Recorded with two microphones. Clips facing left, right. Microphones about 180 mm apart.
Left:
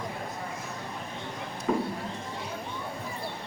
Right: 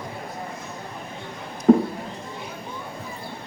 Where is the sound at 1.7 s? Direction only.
45° right (ahead or behind).